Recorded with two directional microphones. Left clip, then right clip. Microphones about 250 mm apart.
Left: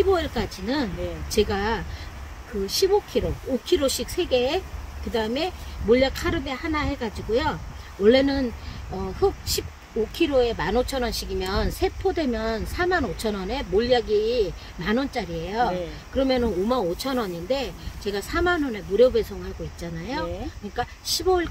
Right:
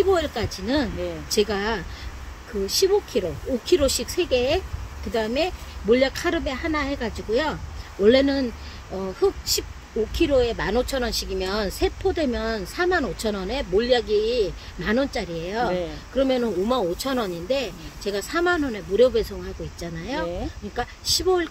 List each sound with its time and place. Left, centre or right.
0.1 s speech: centre